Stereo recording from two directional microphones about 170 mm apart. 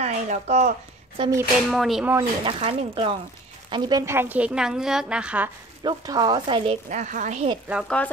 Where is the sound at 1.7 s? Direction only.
Centre (ahead or behind).